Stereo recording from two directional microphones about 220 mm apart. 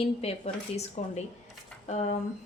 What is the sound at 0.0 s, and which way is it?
A woman's voice, 25° left (ahead or behind).